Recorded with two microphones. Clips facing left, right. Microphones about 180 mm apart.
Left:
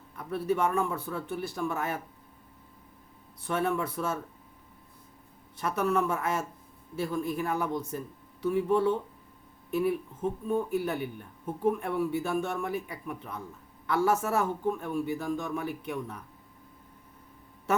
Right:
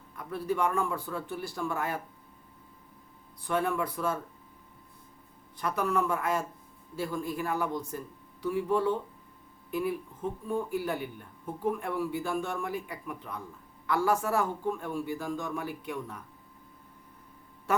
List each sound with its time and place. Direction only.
0.3 s a man's voice: 25° left (ahead or behind)
3.4 s a man's voice: 25° left (ahead or behind)
5.5 s a man's voice: 25° left (ahead or behind)